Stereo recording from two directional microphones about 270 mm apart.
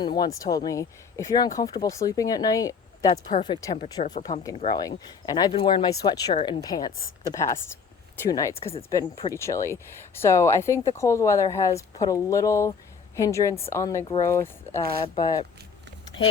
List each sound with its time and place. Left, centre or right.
0.0 s speech: centre